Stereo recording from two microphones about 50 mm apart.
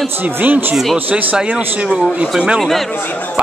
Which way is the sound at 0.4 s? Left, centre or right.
Right.